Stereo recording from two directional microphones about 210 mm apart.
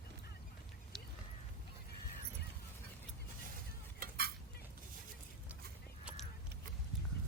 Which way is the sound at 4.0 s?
45° right (ahead or behind).